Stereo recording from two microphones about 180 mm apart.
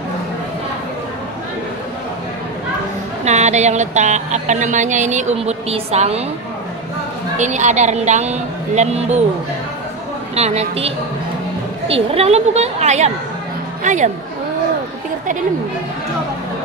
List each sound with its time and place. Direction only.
3.3 s a woman's voice: 40° right (ahead or behind)
7.3 s a woman's voice: 40° right (ahead or behind)
10.3 s a woman's voice: 35° right (ahead or behind)
11.9 s a woman's voice: 35° right (ahead or behind)